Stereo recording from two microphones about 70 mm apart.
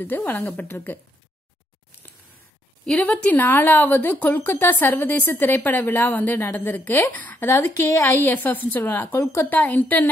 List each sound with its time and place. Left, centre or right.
0.0 s speech: left
2.8 s a woman's voice: centre